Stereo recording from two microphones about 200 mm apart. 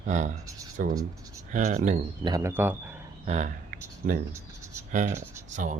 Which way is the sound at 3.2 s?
35° right (ahead or behind).